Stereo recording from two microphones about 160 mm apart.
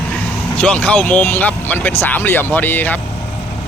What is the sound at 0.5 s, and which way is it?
Speech, 5° left (ahead or behind).